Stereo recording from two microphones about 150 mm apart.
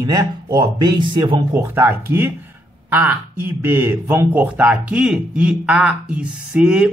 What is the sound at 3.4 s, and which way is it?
Speech, 15° right (ahead or behind).